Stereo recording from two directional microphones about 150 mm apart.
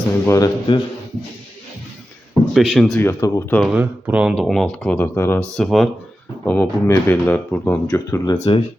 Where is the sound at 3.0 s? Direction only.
20° left (ahead or behind).